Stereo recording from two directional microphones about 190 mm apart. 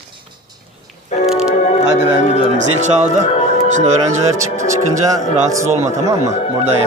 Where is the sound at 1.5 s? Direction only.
40° left (ahead or behind).